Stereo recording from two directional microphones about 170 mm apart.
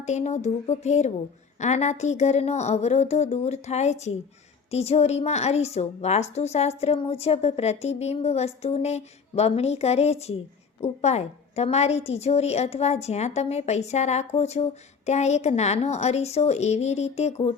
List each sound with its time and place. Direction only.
0.0 s a woman's voice: 40° left (ahead or behind)